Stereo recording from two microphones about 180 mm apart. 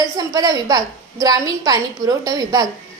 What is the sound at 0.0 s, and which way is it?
A woman's voice, 20° right (ahead or behind).